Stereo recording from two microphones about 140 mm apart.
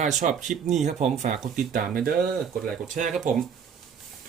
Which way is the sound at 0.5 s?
Centre (ahead or behind).